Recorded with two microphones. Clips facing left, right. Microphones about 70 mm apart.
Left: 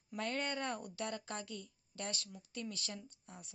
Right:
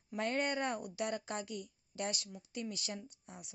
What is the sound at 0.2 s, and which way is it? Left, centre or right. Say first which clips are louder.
A woman's voice: right 4 dB; right.